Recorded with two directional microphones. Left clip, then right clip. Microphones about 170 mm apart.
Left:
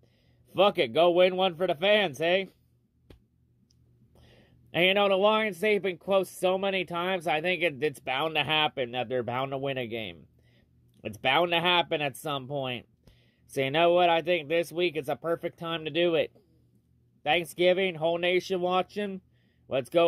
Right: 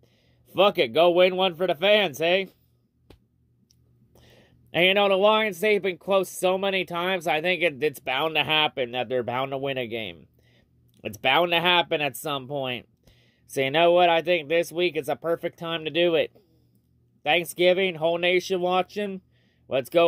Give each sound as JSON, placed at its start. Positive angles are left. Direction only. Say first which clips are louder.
{"t": 0.5, "sound": "speech", "louder": "right 3 dB", "side_deg": -5}
{"t": 4.1, "sound": "speech", "louder": "right 4 dB", "side_deg": -5}